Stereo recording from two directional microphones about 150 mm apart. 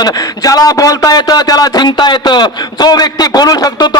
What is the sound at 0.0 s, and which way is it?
A man's voice, 25° left (ahead or behind).